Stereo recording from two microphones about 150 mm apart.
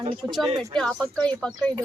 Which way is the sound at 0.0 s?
40° right (ahead or behind).